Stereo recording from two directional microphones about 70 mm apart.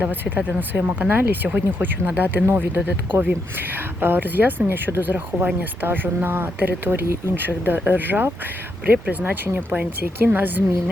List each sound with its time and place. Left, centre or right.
0.0 s speech: right
7.0 s speech: right
7.3 s speech: right